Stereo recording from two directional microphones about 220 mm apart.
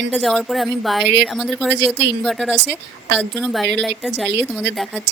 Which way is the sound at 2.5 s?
50° right (ahead or behind).